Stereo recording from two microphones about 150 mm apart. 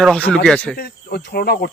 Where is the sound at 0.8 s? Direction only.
90° left.